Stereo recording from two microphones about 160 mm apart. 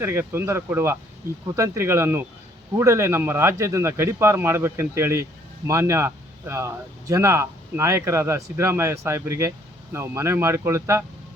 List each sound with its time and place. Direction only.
0.0 s speech: 15° right (ahead or behind)